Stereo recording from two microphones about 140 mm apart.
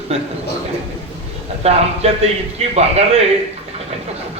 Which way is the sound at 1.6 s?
50° right (ahead or behind).